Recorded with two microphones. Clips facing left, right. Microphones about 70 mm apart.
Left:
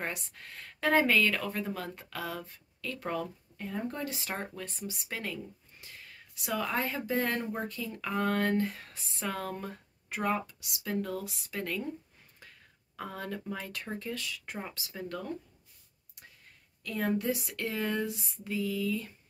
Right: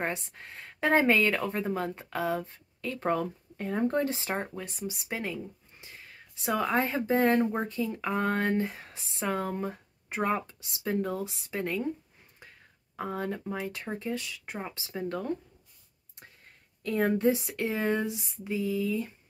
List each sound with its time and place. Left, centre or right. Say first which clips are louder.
0.0 s speech: right 5 dB; right
12.9 s speech: right 5 dB; right
16.8 s speech: right 6 dB; right